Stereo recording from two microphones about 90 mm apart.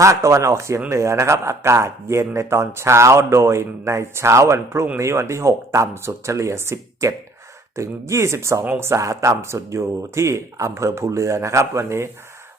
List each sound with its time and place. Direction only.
0.0 s a man's voice: 35° right (ahead or behind)